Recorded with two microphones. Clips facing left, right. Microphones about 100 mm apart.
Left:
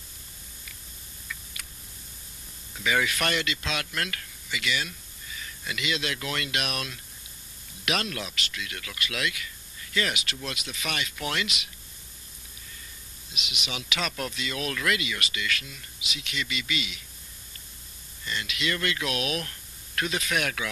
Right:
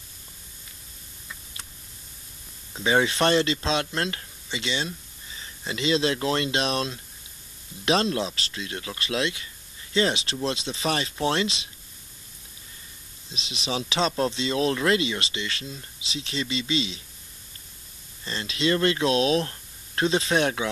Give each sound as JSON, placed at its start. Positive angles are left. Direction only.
{"t": 1.3, "sound": "tick", "side_deg": -30}
{"t": 2.7, "sound": "speech", "side_deg": -30}
{"t": 13.3, "sound": "speech", "side_deg": -30}
{"t": 18.2, "sound": "speech", "side_deg": -30}